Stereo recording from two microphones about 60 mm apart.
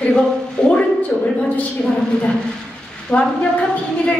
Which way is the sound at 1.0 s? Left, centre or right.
Left.